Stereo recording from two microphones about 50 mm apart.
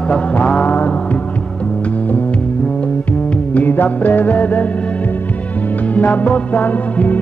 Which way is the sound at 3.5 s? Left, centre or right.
Left.